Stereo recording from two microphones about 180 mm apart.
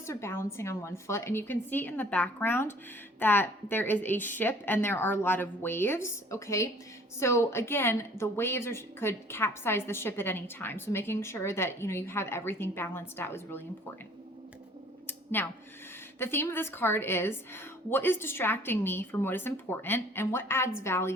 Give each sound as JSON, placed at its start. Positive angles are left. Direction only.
{"t": 0.0, "sound": "a woman's voice", "side_deg": 15}
{"t": 15.0, "sound": "a sound", "side_deg": 10}
{"t": 16.1, "sound": "a woman's voice", "side_deg": 10}